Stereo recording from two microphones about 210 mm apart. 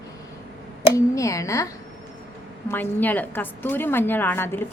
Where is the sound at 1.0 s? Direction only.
15° left (ahead or behind).